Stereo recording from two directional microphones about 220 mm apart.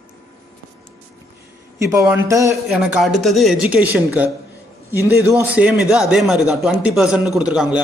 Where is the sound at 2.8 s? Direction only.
5° right (ahead or behind).